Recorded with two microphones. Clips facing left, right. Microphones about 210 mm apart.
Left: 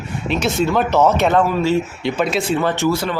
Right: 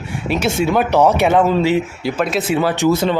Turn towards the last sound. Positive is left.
turn(degrees=-25)  # may be behind; listen again after turning